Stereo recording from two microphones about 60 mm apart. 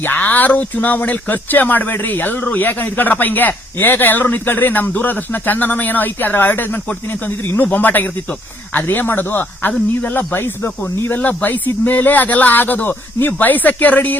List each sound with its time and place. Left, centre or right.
0.0 s speech: left
11.2 s speech: left